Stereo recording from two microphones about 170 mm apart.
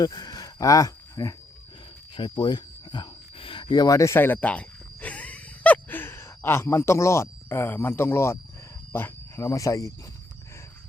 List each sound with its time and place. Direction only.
0.0 s a sound: 25° left (ahead or behind)
2.1 s cricket: 30° left (ahead or behind)
8.9 s speech: 15° left (ahead or behind)